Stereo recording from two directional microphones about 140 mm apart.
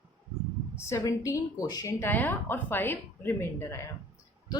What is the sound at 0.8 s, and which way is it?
Speech, 20° left (ahead or behind).